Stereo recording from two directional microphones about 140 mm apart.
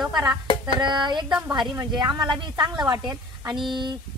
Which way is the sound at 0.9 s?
30° right (ahead or behind).